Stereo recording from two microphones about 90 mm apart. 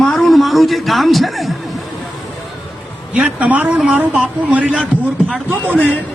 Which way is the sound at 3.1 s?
15° right (ahead or behind).